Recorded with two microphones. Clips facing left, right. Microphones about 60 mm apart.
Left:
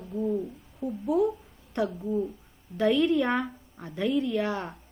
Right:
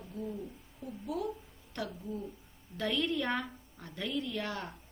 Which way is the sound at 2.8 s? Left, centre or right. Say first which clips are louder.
Left 10 dB; centre.